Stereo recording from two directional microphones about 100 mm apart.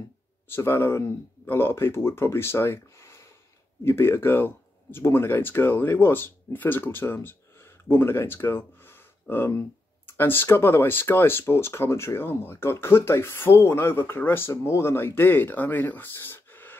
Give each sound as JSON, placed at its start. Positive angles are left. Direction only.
{"t": 0.5, "sound": "speech", "side_deg": 25}